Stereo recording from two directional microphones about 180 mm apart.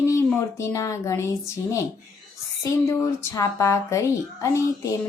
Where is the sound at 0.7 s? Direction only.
15° left (ahead or behind).